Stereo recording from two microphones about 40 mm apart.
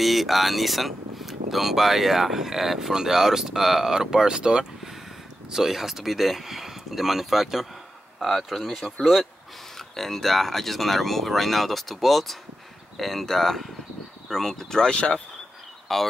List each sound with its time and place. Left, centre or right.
0.0 s speech: centre; by 4.6 s right
5.5 s speech: centre
8.2 s speech: centre
15.0 s speech: left
15.9 s speech: centre